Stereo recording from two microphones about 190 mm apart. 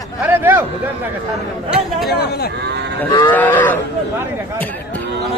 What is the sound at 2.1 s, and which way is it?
Speech, 55° left (ahead or behind).